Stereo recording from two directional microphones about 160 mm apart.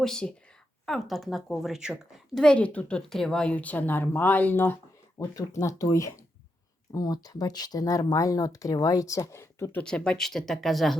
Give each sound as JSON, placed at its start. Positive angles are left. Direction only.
{"t": 0.0, "sound": "a woman's voice", "side_deg": 5}
{"t": 9.8, "sound": "a woman's voice", "side_deg": 5}